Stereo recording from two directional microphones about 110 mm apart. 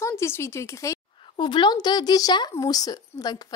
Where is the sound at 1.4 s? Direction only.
45° left (ahead or behind).